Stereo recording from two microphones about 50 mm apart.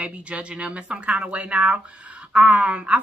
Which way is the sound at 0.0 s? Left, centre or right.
Right.